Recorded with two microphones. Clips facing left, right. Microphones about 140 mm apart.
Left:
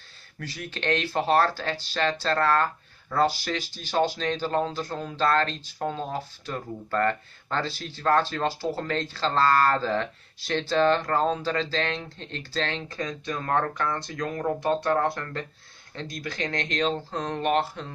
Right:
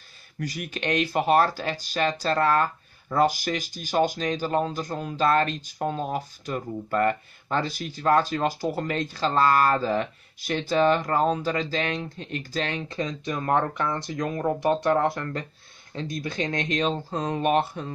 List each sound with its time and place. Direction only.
0.4 s speech: 15° right (ahead or behind)